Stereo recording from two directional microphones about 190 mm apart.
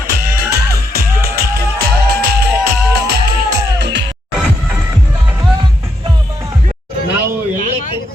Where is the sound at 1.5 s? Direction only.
55° right (ahead or behind).